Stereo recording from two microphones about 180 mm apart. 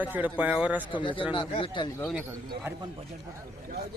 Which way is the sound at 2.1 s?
5° right (ahead or behind).